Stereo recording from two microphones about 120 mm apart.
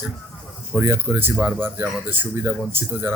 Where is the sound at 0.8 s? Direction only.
20° right (ahead or behind).